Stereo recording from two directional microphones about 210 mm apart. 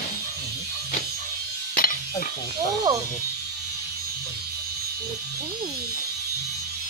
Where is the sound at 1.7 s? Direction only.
45° left (ahead or behind).